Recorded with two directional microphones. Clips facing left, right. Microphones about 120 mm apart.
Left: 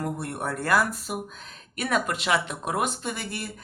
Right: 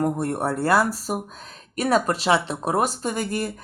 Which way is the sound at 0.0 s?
40° right (ahead or behind).